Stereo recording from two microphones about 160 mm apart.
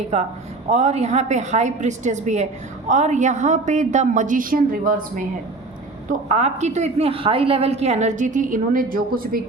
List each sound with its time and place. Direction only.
0.1 s a woman's voice: 45° right (ahead or behind)
6.1 s a woman's voice: 45° right (ahead or behind); by 9.4 s 65° right (ahead or behind)